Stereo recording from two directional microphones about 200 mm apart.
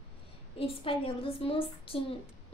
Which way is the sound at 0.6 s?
25° left (ahead or behind).